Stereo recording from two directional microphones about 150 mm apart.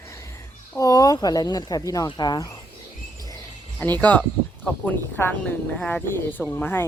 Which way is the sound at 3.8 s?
10° left (ahead or behind).